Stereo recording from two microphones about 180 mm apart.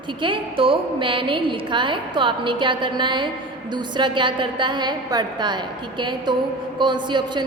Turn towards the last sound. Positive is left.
turn(degrees=-25)  # may be behind; listen again after turning